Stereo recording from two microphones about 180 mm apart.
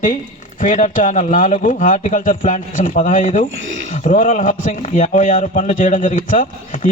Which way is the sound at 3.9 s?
45° left (ahead or behind).